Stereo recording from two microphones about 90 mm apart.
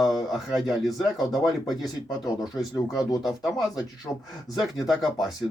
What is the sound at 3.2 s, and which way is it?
Speech, 5° right (ahead or behind).